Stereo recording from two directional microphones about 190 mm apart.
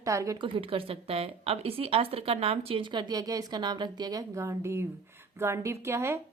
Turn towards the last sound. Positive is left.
turn(degrees=-15)  # may be behind; listen again after turning